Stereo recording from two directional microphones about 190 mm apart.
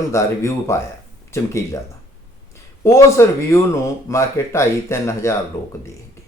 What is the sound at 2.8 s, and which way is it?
Speech, 15° left (ahead or behind).